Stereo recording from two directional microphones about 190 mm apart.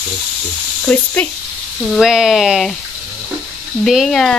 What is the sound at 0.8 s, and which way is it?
Speech, 10° left (ahead or behind).